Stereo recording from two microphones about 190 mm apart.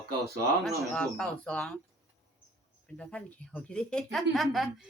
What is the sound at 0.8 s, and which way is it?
Speech, centre (ahead or behind).